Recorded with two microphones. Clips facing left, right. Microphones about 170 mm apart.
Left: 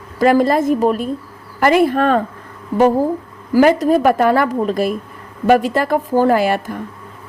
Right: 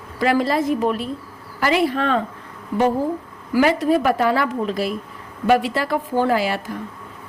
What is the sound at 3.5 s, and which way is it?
A woman's voice, 40° left (ahead or behind).